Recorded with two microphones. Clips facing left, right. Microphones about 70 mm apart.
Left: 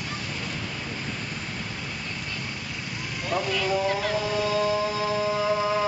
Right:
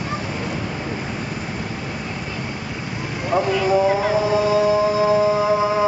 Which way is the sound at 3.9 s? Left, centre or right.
Centre.